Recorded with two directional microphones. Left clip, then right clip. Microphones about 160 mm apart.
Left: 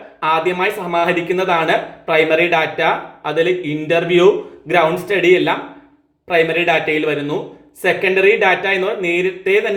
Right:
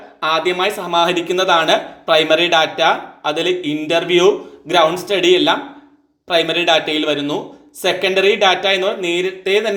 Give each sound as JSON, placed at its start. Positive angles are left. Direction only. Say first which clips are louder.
{"t": 0.2, "sound": "a man's voice", "louder": "even", "side_deg": -25}